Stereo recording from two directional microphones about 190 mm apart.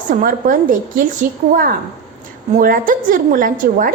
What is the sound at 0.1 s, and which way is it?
Speech, 45° right (ahead or behind).